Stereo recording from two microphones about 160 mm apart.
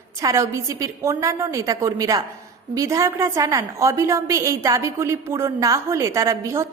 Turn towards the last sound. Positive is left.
turn(degrees=-20)  # may be behind; listen again after turning